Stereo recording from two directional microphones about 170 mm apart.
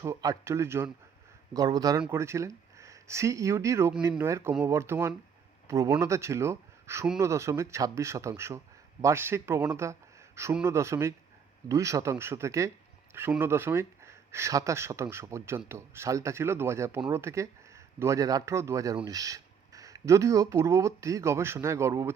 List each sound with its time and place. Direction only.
0.0 s speech: 20° right (ahead or behind)